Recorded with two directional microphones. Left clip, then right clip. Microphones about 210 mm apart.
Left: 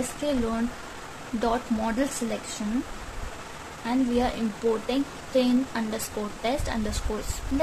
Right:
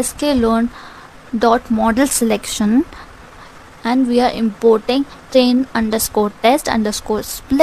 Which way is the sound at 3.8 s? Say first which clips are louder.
Right 11 dB; 40° right (ahead or behind).